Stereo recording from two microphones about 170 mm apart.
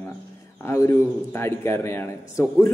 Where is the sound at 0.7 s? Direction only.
15° left (ahead or behind).